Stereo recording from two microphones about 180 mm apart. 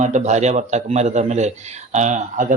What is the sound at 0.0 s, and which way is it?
A man's voice, 40° right (ahead or behind).